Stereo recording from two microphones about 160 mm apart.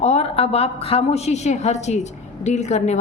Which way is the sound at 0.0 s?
40° left (ahead or behind).